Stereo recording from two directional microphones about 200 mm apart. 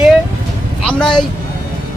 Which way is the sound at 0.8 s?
5° left (ahead or behind).